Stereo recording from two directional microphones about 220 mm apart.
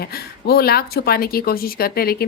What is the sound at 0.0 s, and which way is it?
Speech, 45° left (ahead or behind).